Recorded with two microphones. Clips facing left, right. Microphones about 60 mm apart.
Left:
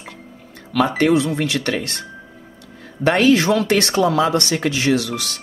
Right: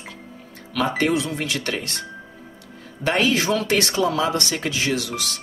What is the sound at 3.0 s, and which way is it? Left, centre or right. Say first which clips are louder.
Speech: left 6 dB; left.